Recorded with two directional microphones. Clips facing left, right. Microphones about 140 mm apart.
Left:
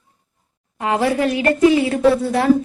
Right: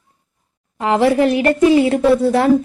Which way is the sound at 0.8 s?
30° right (ahead or behind).